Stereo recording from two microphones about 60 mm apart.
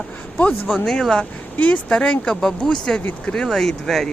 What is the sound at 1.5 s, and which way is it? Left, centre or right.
Speech, left.